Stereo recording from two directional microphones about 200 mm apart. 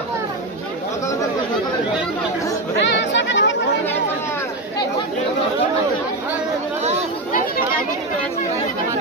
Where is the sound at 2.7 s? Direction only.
65° left (ahead or behind).